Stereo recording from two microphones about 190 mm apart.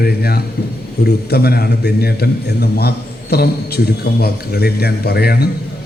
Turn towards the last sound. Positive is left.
turn(degrees=55)  # may be behind; listen again after turning